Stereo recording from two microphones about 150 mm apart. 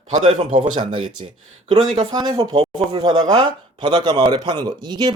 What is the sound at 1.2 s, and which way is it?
Speech, 40° right (ahead or behind).